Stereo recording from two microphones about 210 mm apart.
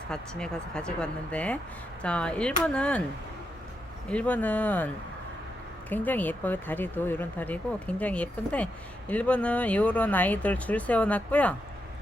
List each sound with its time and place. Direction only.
0.1 s speech: 5° left (ahead or behind)
4.1 s speech: 5° left (ahead or behind)
5.9 s speech: 10° left (ahead or behind)